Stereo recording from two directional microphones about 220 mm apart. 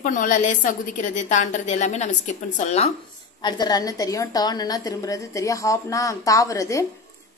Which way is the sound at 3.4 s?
20° left (ahead or behind).